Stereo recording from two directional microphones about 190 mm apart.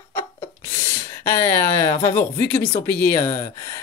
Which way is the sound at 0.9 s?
15° left (ahead or behind).